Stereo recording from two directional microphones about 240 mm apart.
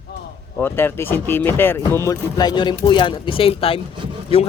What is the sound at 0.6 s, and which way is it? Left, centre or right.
Speech, centre.